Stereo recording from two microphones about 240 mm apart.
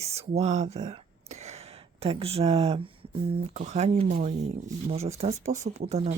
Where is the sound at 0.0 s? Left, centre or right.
Right.